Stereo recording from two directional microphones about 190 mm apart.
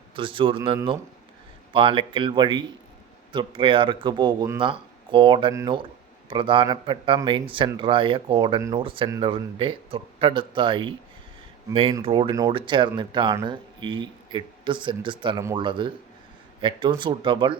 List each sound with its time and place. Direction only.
0.2 s speech: 25° right (ahead or behind)